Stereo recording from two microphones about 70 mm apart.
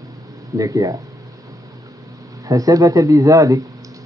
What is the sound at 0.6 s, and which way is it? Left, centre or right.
Speech, right.